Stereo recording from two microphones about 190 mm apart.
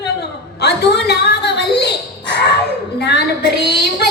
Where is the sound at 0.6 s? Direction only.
60° left (ahead or behind).